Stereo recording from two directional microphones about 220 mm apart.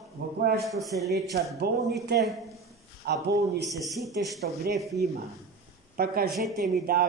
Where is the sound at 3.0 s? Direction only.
50° right (ahead or behind).